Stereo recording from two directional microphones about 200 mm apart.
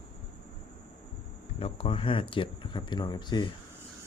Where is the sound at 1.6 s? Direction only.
30° left (ahead or behind).